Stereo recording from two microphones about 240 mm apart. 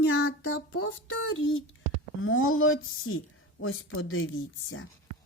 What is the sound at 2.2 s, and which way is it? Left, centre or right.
Speech, left.